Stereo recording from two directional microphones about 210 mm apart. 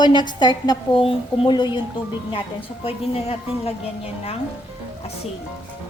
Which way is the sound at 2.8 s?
30° left (ahead or behind).